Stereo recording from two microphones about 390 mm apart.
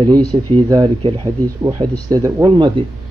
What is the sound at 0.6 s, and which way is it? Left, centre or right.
Speech, centre.